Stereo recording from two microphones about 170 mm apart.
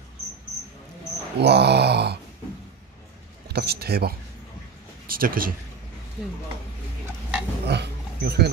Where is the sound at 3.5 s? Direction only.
70° right (ahead or behind).